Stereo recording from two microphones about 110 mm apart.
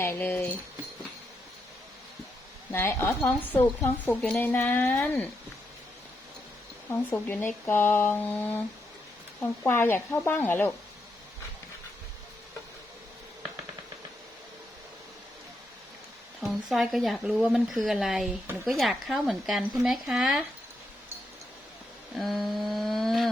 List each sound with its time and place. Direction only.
0.0 s speech: 20° left (ahead or behind)
2.7 s a woman's voice: 25° left (ahead or behind)
6.9 s speech: 15° left (ahead or behind)
16.4 s speech: centre (ahead or behind)
22.1 s a sound: centre (ahead or behind)